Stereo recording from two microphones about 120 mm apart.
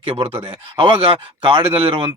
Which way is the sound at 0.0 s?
50° right (ahead or behind).